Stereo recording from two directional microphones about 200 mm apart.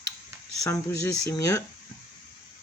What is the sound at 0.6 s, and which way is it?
Speech, 15° left (ahead or behind).